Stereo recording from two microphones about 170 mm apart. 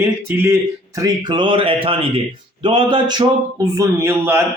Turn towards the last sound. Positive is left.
turn(degrees=-15)  # may be behind; listen again after turning